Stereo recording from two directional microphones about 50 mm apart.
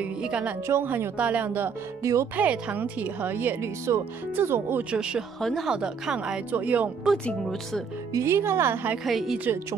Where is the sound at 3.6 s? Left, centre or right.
Right.